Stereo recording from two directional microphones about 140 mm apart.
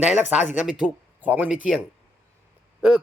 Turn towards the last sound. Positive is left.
turn(degrees=-5)  # may be behind; listen again after turning